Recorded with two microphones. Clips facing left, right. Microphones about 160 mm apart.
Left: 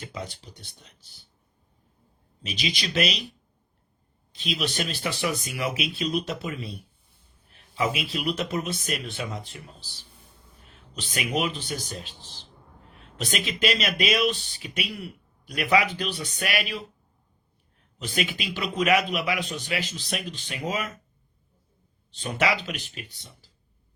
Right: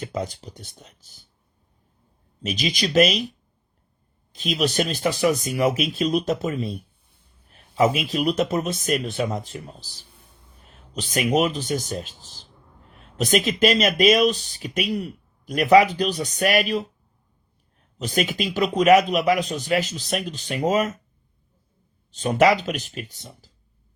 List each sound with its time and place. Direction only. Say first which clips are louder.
0.0 s speech: right 8 dB; 45° right (ahead or behind)
2.4 s speech: right 6 dB; 45° right (ahead or behind)
4.3 s a man's voice: right 6 dB; 45° right (ahead or behind)
18.0 s speech: right 6 dB; 40° right (ahead or behind)
22.1 s speech: right 8 dB; 45° right (ahead or behind)